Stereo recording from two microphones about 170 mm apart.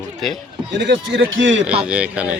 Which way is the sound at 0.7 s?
90° right.